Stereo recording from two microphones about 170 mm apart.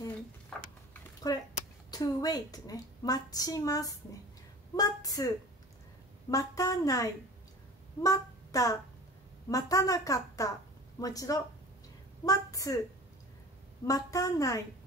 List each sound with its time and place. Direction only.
1.3 s a woman's voice: 20° left (ahead or behind)
6.3 s a woman's voice: 20° left (ahead or behind)
13.8 s a woman's voice: 20° left (ahead or behind)